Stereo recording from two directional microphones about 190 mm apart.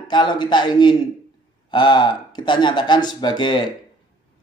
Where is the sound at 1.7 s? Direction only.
25° left (ahead or behind).